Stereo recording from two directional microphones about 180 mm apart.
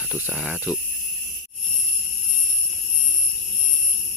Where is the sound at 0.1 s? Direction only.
5° right (ahead or behind).